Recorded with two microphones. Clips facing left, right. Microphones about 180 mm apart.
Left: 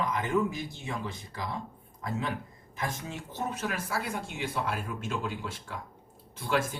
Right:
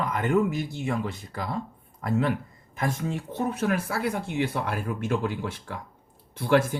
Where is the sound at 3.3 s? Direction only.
55° right (ahead or behind).